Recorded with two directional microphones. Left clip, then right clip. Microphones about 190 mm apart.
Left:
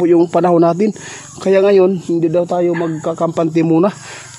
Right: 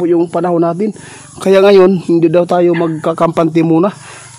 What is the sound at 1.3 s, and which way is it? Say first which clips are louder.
Speech: right 4 dB; 20° right (ahead or behind).